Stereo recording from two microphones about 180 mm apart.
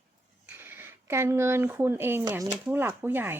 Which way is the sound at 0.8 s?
15° right (ahead or behind).